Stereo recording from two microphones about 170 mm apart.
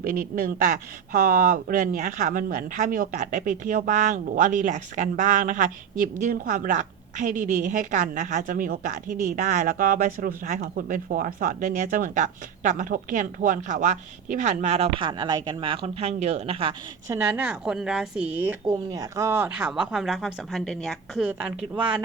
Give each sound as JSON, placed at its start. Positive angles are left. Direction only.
{"t": 0.0, "sound": "speech", "side_deg": -55}
{"t": 17.1, "sound": "a woman's voice", "side_deg": -15}
{"t": 18.6, "sound": "speech", "side_deg": -25}
{"t": 21.2, "sound": "a woman's voice", "side_deg": -5}